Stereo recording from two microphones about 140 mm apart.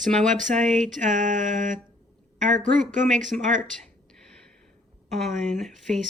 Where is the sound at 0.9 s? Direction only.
65° right (ahead or behind).